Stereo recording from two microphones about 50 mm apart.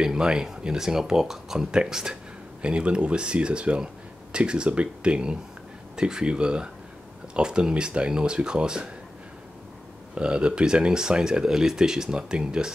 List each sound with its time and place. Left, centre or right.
0.0 s speech: centre
10.1 s speech: centre